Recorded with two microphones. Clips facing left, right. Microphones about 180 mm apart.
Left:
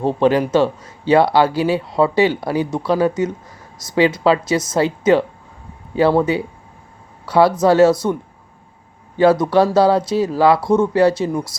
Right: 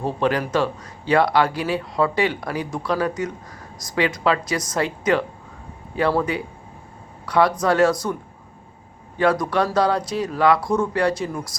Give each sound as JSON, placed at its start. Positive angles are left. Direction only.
{"t": 0.0, "sound": "speech", "side_deg": 30}
{"t": 9.1, "sound": "speech", "side_deg": 25}